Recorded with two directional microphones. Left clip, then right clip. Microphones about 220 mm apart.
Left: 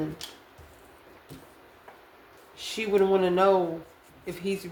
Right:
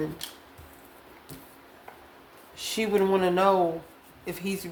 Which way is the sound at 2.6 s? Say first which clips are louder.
Left 1 dB; 30° right (ahead or behind).